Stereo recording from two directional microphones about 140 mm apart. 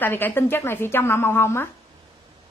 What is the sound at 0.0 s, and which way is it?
A woman's voice, 15° left (ahead or behind).